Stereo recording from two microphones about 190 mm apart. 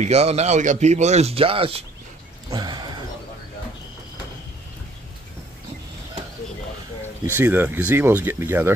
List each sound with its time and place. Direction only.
0.0 s speech: 35° right (ahead or behind)
2.5 s a sound: 20° right (ahead or behind)
7.2 s speech: 10° right (ahead or behind)